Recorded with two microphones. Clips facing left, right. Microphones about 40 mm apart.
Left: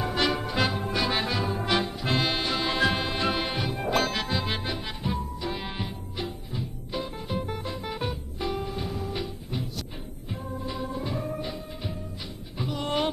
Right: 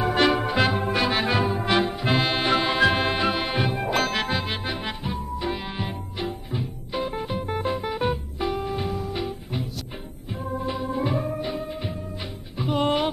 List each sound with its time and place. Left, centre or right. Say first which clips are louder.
0.0 s music: right 6 dB; centre
1.3 s brass instrument: right 4 dB; centre
1.9 s music: right 4 dB; right
2.4 s music: right 6 dB; right
2.7 s music: right 5 dB; centre
3.5 s music: right 4 dB; right
3.9 s music: even; centre
4.2 s music: right 3 dB; right
6.1 s music: right 4 dB; centre
8.0 s music: right 5 dB; centre
9.2 s music: right 4 dB; centre
10.4 s organ: right 6 dB; right
11.2 s music: right 4 dB; centre
12.6 s music: right 9 dB; right